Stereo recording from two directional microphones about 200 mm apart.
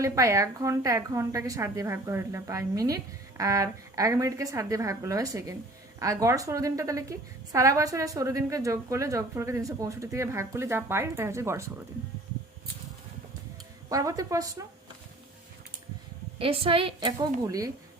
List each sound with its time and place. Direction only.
0.0 s a woman's voice: 15° right (ahead or behind)
13.9 s a woman's voice: 15° right (ahead or behind)
16.4 s a woman's voice: 25° right (ahead or behind)